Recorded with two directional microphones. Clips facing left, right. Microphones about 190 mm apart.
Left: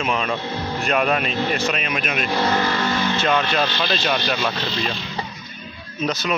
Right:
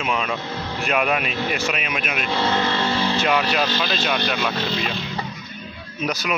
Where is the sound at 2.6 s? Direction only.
25° right (ahead or behind).